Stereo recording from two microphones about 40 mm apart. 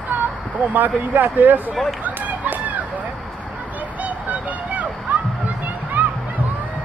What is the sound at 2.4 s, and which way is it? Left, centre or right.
Chicken, right.